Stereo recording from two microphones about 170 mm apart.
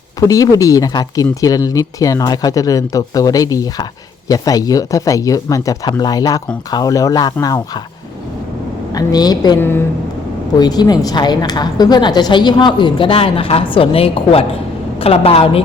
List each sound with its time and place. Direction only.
0.3 s a woman's voice: 20° left (ahead or behind)
8.9 s a woman's voice: 25° left (ahead or behind)
9.6 s a woman's voice: 15° left (ahead or behind)
10.6 s a woman's voice: 25° left (ahead or behind)